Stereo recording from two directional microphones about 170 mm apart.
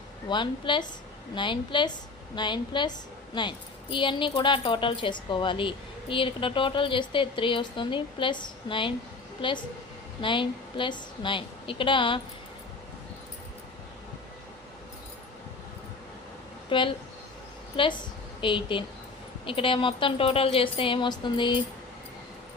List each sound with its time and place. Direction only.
0.3 s a woman's voice: 25° left (ahead or behind)
16.6 s speech: 30° left (ahead or behind)
18.3 s a woman's voice: 30° left (ahead or behind)